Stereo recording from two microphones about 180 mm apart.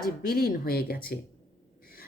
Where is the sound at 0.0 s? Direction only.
55° left (ahead or behind).